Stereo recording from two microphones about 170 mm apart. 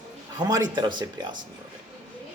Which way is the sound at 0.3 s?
20° right (ahead or behind).